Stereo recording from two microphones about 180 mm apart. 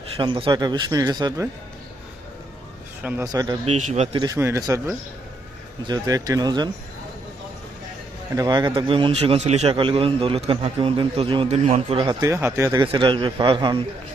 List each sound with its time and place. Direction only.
0.2 s a man's voice: 25° right (ahead or behind)
3.0 s speech: 10° right (ahead or behind)
3.3 s a man's voice: 20° right (ahead or behind)
3.7 s speech: 40° right (ahead or behind)
4.4 s a man's voice: 15° right (ahead or behind)
8.4 s a man's voice: 25° right (ahead or behind)